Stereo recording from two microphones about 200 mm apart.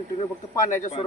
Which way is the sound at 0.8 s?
35° left (ahead or behind).